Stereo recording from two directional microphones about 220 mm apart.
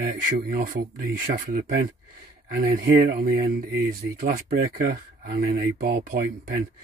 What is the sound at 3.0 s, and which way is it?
Speech, 45° right (ahead or behind).